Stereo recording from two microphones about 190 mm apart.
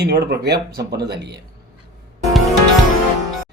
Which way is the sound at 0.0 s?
60° right (ahead or behind).